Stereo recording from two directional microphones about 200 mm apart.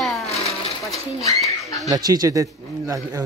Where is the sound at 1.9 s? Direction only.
20° right (ahead or behind).